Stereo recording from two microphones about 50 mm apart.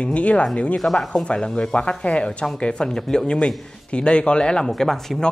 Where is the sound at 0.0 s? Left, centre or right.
Left.